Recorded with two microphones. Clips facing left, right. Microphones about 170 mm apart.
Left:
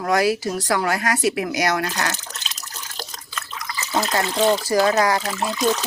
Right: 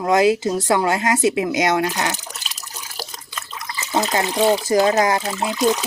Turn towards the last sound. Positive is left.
turn(degrees=-15)  # may be behind; listen again after turning